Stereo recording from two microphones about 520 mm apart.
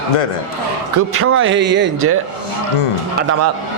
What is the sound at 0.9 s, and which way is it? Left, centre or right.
Speech, right.